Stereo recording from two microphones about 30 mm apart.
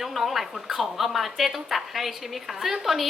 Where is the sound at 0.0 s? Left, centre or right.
Centre.